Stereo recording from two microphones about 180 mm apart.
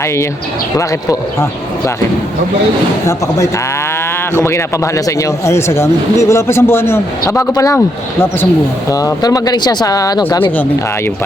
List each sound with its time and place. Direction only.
3.1 s speech: 15° left (ahead or behind)
8.9 s speech: 20° left (ahead or behind)